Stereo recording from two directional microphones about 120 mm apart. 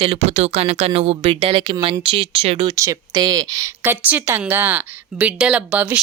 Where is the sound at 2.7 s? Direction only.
30° right (ahead or behind); by 6.0 s 10° right (ahead or behind).